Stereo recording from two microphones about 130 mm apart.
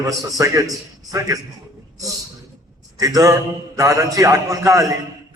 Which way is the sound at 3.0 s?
25° right (ahead or behind).